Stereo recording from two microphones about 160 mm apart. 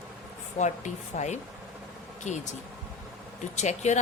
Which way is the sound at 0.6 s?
50° left (ahead or behind).